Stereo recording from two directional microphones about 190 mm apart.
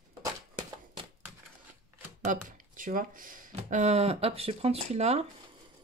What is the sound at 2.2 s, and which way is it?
Speech, 45° right (ahead or behind).